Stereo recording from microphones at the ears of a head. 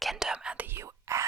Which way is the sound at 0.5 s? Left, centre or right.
Right.